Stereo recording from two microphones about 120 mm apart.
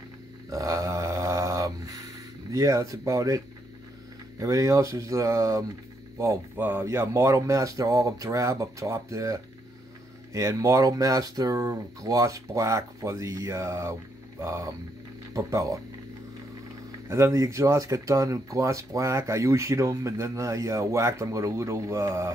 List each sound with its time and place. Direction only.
0.5 s a sound: 30° right (ahead or behind)
4.4 s speech: 25° right (ahead or behind)
17.1 s speech: 25° right (ahead or behind)